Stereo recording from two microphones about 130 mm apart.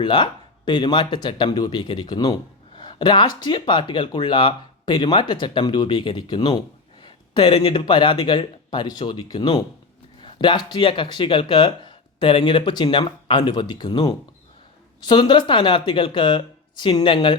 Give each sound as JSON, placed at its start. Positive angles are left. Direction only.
{"t": 0.0, "sound": "speech", "side_deg": 35}